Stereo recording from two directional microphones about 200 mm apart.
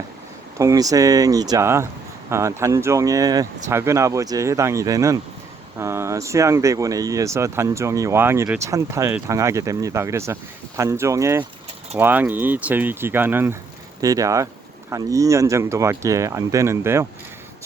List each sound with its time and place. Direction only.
0.6 s speech: 15° right (ahead or behind)